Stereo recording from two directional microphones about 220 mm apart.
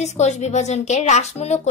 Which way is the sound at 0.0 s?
30° left (ahead or behind).